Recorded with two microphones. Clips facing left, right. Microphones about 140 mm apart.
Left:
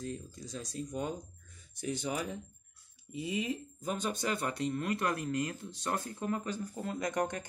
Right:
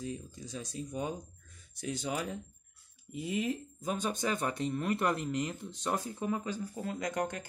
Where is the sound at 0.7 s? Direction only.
5° right (ahead or behind).